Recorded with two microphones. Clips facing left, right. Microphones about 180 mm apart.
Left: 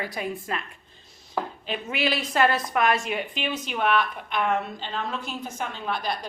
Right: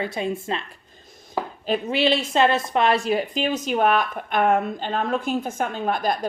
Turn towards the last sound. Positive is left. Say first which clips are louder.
# right 6 dB
turn(degrees=-45)  # may be behind; listen again after turning